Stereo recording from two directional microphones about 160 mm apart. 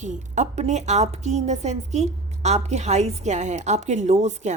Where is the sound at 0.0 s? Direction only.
45° right (ahead or behind).